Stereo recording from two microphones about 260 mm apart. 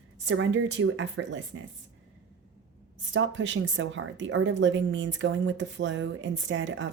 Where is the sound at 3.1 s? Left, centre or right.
Right.